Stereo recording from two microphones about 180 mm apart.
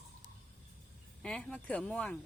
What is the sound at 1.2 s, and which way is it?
Speech, 5° left (ahead or behind).